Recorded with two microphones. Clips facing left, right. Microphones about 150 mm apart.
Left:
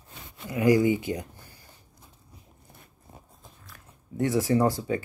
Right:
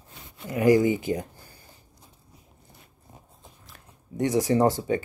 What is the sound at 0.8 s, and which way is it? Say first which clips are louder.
Speech: even; 20° left (ahead or behind).